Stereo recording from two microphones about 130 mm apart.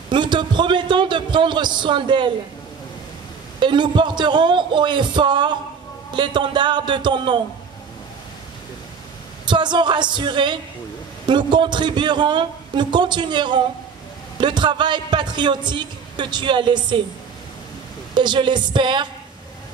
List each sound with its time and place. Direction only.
0.1 s a man's voice: 35° right (ahead or behind)
3.5 s a woman's voice: 35° right (ahead or behind)
9.5 s a woman's voice: 35° right (ahead or behind)
18.1 s a woman's voice: 35° right (ahead or behind)